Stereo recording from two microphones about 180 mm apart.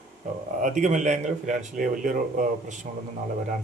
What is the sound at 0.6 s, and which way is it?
Speech, 45° right (ahead or behind).